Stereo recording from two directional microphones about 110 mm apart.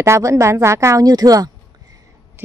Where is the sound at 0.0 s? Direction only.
25° right (ahead or behind).